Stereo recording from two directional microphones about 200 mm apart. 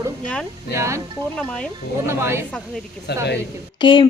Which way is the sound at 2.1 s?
10° right (ahead or behind).